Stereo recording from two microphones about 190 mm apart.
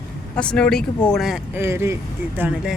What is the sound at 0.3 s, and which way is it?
Speech, 5° left (ahead or behind).